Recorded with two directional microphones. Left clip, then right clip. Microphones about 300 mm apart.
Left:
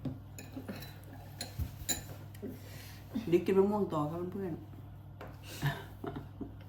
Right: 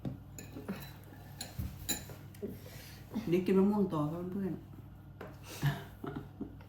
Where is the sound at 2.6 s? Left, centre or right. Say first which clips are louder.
Even; centre.